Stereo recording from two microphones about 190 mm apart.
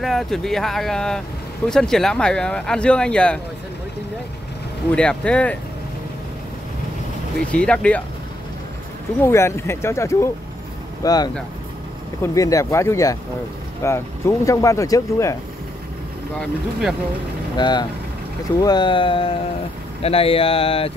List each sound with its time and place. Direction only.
0.0 s speech: centre (ahead or behind)
4.9 s speech: 5° left (ahead or behind)
7.5 s speech: 5° left (ahead or behind)
9.2 s speech: 15° left (ahead or behind)
17.6 s speech: 25° left (ahead or behind)